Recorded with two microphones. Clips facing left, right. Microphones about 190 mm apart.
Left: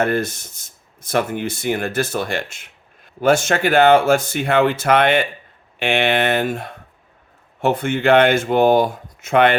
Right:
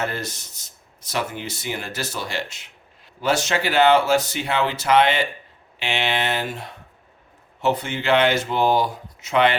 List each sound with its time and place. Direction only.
0.0 s speech: 55° left (ahead or behind)